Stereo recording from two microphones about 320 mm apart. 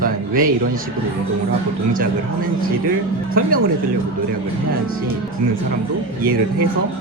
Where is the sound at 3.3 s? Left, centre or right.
Right.